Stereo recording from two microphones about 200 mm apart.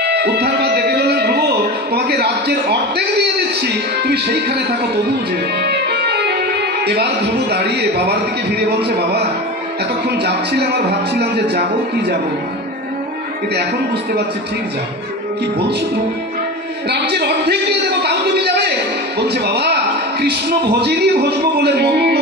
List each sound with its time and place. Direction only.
0.0 s music: 55° right (ahead or behind)
5.6 s music: 55° right (ahead or behind)
6.9 s a man's voice: 55° right (ahead or behind)
10.2 s a man's voice: 55° right (ahead or behind)
16.9 s a sound: 55° right (ahead or behind)
20.8 s a man's voice: 55° right (ahead or behind)